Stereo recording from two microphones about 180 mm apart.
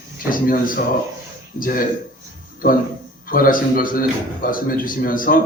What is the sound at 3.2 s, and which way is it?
A man's voice, 50° left (ahead or behind).